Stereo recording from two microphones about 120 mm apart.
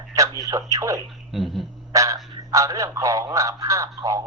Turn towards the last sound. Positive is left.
turn(degrees=-30)  # may be behind; listen again after turning